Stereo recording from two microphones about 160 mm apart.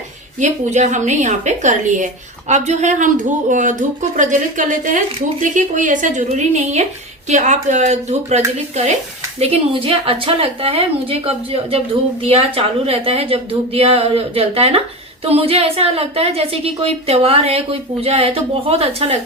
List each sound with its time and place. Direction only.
0.3 s a woman's voice: 45° right (ahead or behind)